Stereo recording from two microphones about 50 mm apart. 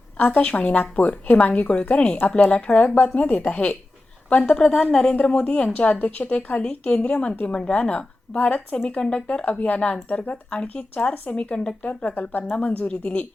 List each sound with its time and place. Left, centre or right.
0.2 s a woman's voice: left
11.9 s speech: left
12.5 s a woman's voice: centre